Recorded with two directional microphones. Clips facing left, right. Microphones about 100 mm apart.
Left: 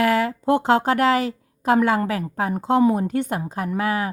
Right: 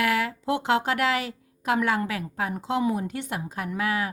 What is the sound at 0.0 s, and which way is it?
Speech, 35° left (ahead or behind).